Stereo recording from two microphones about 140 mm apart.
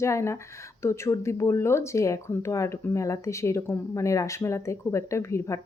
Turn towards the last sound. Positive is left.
turn(degrees=20)  # may be behind; listen again after turning